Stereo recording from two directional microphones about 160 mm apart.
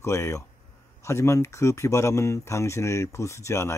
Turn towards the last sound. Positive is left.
turn(degrees=15)  # may be behind; listen again after turning